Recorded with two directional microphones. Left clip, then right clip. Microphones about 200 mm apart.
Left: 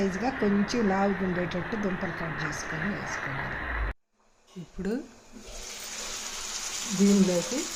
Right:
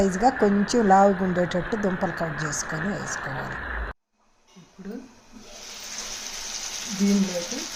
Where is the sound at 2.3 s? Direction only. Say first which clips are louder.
Right 3 dB; 35° right (ahead or behind).